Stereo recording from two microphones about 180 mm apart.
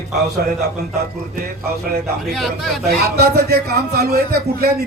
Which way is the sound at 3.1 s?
60° right (ahead or behind).